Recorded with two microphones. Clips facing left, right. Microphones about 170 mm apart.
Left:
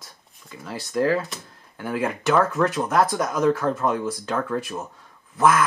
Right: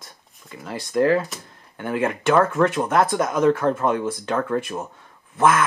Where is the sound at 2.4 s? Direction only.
25° right (ahead or behind).